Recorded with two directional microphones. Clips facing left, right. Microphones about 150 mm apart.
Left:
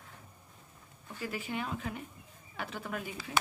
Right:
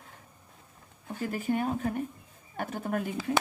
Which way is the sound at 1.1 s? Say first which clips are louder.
Right 8 dB; 50° right (ahead or behind).